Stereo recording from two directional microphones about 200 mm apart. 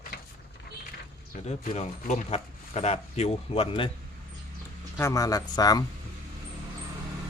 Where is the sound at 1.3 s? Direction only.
40° left (ahead or behind).